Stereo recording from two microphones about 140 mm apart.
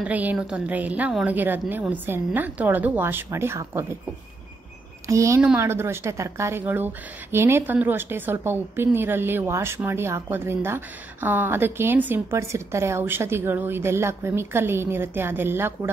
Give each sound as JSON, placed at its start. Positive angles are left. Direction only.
{"t": 0.0, "sound": "a woman's voice", "side_deg": -10}
{"t": 5.0, "sound": "a woman's voice", "side_deg": -20}